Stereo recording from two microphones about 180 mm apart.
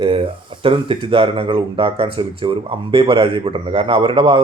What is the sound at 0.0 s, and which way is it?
Speech, 30° right (ahead or behind).